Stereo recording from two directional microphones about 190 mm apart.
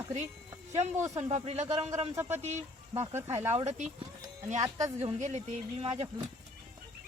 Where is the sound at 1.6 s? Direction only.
15° right (ahead or behind).